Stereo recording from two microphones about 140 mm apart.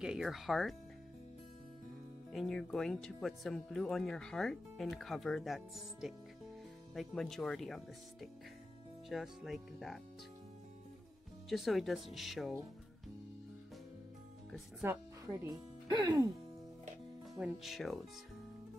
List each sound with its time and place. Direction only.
0.0 s speech: 5° right (ahead or behind)
2.3 s speech: 5° left (ahead or behind)
11.4 s speech: centre (ahead or behind)
14.8 s speech: 20° right (ahead or behind)
17.4 s speech: centre (ahead or behind)